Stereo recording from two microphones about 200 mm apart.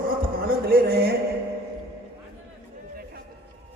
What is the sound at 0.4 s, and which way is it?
Music, 50° right (ahead or behind).